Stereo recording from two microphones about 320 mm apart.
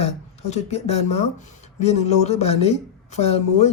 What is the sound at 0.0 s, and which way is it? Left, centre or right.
A man's voice, left.